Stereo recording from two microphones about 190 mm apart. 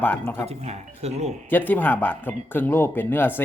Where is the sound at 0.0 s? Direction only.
10° left (ahead or behind).